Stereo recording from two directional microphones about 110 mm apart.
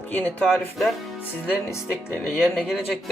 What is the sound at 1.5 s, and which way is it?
Speech, 15° left (ahead or behind).